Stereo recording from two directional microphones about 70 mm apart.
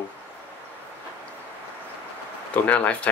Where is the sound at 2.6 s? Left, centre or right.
Left.